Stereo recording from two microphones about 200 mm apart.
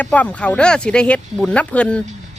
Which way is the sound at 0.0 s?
5° left (ahead or behind).